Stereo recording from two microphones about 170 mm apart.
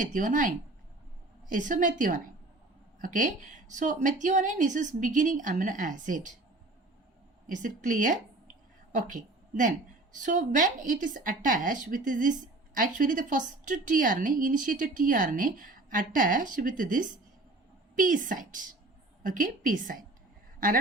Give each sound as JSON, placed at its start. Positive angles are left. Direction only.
{"t": 0.0, "sound": "a woman's voice", "side_deg": -50}
{"t": 7.4, "sound": "a woman's voice", "side_deg": -50}